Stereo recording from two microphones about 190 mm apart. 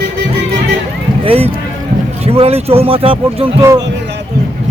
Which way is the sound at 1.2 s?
30° right (ahead or behind).